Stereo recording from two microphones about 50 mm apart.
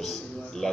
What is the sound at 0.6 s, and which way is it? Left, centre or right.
Speech, centre.